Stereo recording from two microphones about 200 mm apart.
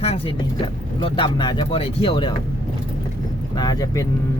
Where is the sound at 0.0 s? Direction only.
30° left (ahead or behind).